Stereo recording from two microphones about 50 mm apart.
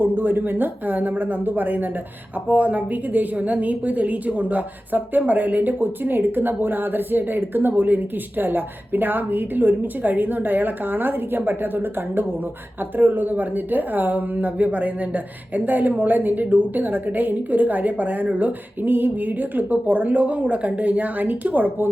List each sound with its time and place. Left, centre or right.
0.0 s speech: right